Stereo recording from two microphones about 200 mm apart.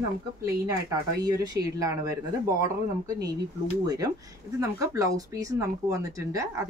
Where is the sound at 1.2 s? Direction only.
20° right (ahead or behind).